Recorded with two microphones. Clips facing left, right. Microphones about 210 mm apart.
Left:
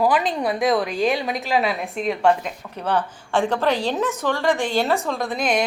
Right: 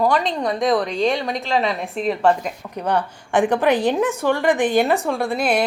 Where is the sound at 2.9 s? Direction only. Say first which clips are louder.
Right 1 dB; 15° right (ahead or behind).